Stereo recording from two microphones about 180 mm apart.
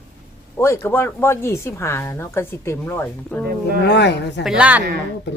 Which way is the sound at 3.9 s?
70° left (ahead or behind).